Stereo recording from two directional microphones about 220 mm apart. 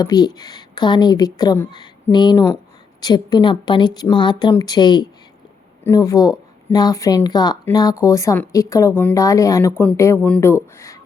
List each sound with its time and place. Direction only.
0.0 s a woman's voice: 15° left (ahead or behind)